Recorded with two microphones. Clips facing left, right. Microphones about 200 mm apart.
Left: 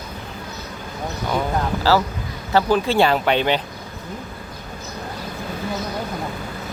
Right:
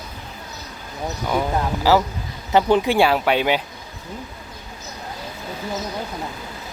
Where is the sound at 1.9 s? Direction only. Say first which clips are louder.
Right 2 dB; 15° right (ahead or behind).